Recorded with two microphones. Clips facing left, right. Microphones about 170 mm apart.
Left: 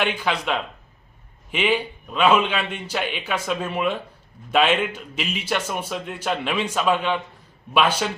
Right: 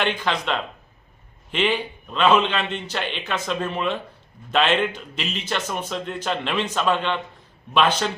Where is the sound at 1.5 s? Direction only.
10° left (ahead or behind).